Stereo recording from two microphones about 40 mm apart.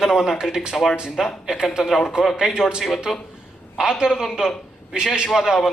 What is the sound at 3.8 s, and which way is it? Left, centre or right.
A man's voice, centre.